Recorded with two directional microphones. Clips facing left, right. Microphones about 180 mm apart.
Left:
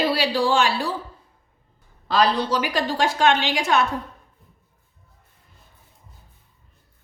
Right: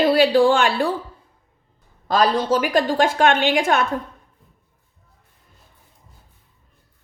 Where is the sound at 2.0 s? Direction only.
45° right (ahead or behind).